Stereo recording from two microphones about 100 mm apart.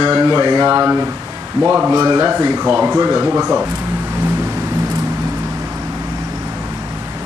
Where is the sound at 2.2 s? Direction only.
20° right (ahead or behind).